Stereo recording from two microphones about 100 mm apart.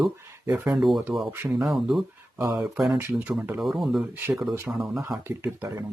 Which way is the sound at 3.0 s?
20° right (ahead or behind).